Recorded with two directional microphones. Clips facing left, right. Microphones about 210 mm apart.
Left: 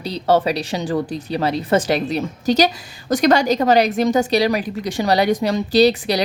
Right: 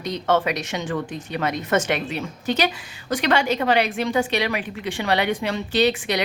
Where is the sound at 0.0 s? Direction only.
35° left (ahead or behind).